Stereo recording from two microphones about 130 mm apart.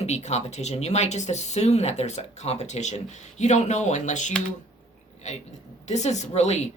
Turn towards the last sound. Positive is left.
turn(degrees=55)  # may be behind; listen again after turning